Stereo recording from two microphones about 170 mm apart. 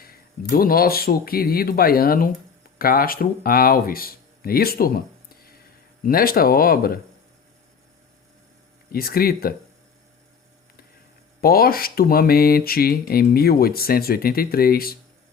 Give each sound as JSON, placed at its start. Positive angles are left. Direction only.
{"t": 0.0, "sound": "speech", "side_deg": 60}
{"t": 8.9, "sound": "speech", "side_deg": 60}
{"t": 11.3, "sound": "speech", "side_deg": 60}